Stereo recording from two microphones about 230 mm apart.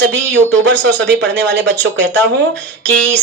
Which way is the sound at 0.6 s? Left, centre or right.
Right.